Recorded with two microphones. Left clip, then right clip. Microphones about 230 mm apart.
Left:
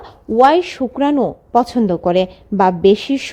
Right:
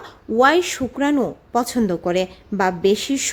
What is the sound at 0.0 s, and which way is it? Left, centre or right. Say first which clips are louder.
A woman's voice: left 4 dB; centre.